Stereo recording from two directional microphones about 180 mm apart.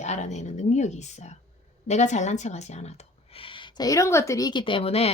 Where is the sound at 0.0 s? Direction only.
40° left (ahead or behind).